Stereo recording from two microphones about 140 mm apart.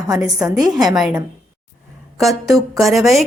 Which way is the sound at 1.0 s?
5° right (ahead or behind).